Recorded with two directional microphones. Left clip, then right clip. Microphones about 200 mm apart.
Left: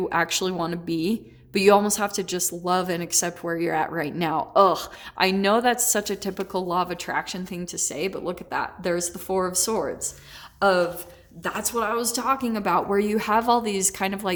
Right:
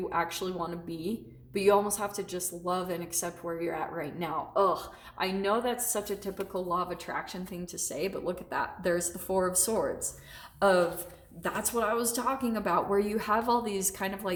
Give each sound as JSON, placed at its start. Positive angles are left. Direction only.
{"t": 0.1, "sound": "a woman's voice", "side_deg": 50}